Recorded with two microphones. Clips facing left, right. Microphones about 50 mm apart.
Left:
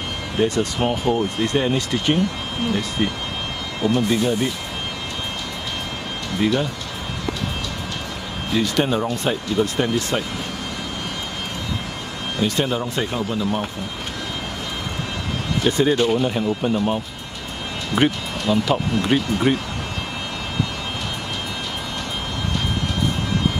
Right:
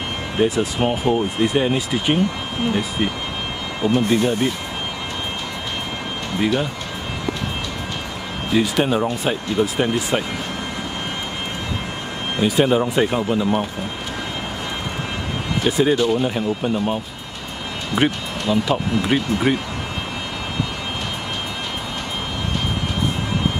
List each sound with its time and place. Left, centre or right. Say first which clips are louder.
0.4 s speech: right 1 dB; centre
3.8 s speech: right 2 dB; centre
6.4 s speech: even; centre
8.5 s speech: right 2 dB; centre
12.4 s speech: right 5 dB; centre
15.6 s speech: right 1 dB; centre